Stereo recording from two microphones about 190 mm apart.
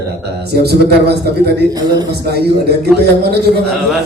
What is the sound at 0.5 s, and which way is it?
Speech, 60° right (ahead or behind).